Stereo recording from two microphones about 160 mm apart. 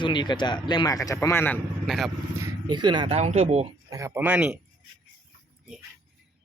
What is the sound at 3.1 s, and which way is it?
Speech, 45° right (ahead or behind).